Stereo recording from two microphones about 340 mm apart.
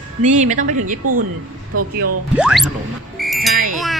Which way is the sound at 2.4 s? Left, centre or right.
Centre.